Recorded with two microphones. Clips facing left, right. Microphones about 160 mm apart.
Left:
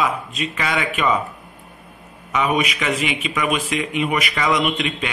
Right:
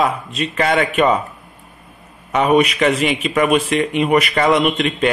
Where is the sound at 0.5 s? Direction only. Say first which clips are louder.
Right 8 dB; 50° right (ahead or behind).